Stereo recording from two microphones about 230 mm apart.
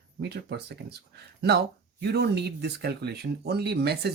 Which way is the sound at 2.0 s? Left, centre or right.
Right.